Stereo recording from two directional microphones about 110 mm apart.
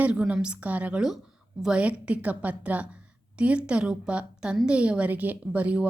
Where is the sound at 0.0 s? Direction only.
10° right (ahead or behind).